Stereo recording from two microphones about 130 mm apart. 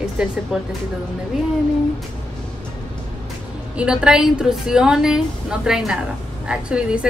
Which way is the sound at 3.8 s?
5° right (ahead or behind).